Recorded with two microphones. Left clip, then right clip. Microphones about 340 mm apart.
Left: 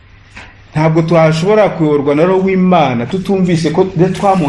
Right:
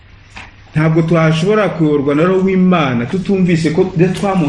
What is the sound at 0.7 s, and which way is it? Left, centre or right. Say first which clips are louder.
A man's voice: left 3 dB; centre.